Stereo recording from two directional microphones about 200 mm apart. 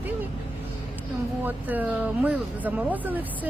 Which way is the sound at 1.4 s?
10° right (ahead or behind).